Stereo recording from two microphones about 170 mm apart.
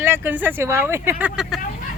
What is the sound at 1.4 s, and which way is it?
Speech, centre (ahead or behind).